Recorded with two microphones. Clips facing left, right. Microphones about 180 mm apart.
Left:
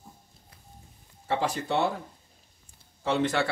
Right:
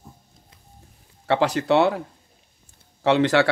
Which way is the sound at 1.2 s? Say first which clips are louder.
Right 7 dB; 75° right (ahead or behind).